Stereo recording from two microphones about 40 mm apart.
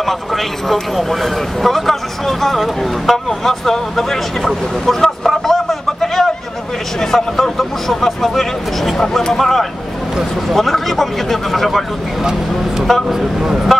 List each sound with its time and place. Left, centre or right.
0.0 s speech: centre
12.2 s speech: centre